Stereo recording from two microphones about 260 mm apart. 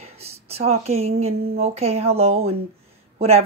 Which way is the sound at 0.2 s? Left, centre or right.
Right.